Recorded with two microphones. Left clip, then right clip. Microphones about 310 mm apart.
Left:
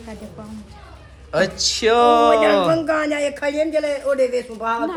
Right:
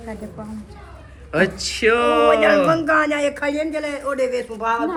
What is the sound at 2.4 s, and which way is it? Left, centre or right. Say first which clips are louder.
A man's voice: right 1 dB; centre.